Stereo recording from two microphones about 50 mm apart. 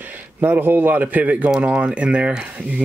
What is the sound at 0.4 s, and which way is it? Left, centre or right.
A man's voice, right.